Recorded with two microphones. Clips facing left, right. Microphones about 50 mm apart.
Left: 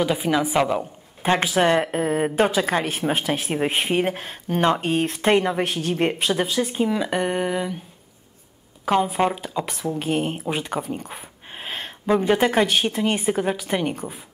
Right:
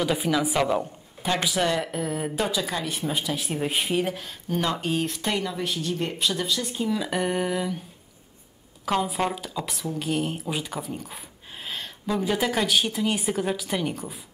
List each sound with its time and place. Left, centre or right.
0.0 s a woman's voice: centre
1.2 s speech: left
3.5 s speech: left
7.1 s a woman's voice: centre
8.8 s a woman's voice: left
13.3 s speech: left